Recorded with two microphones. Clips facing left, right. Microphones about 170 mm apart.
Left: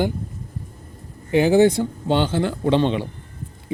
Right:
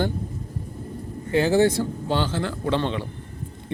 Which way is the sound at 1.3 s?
15° left (ahead or behind).